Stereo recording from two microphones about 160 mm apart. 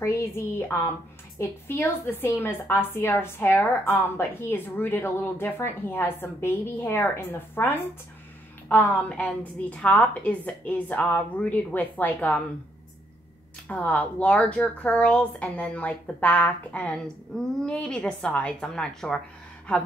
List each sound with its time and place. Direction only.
0.0 s a woman's voice: 15° left (ahead or behind)
13.7 s a woman's voice: 10° left (ahead or behind)